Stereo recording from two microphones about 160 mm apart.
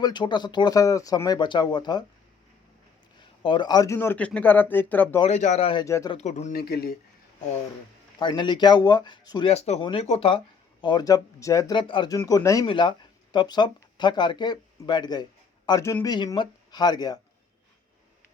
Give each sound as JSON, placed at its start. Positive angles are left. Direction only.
{"t": 0.0, "sound": "speech", "side_deg": 30}
{"t": 3.2, "sound": "a man's voice", "side_deg": 30}
{"t": 5.2, "sound": "a man's voice", "side_deg": 45}
{"t": 5.8, "sound": "speech", "side_deg": 20}
{"t": 6.1, "sound": "speech", "side_deg": 45}
{"t": 6.6, "sound": "speech", "side_deg": 75}
{"t": 8.2, "sound": "speech", "side_deg": 30}
{"t": 9.5, "sound": "a man's voice", "side_deg": 40}
{"t": 11.8, "sound": "speech", "side_deg": 30}